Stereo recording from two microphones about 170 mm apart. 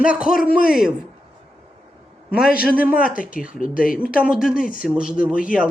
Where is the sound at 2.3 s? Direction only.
5° right (ahead or behind).